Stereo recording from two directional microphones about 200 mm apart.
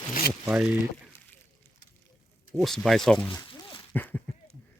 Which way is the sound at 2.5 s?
Centre (ahead or behind).